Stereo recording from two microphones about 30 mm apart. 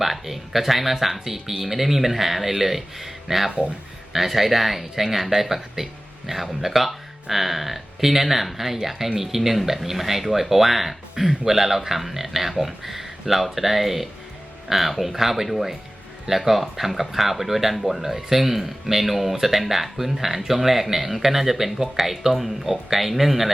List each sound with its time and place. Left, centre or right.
0.0 s speech: centre
11.1 s speech: right
11.4 s speech: centre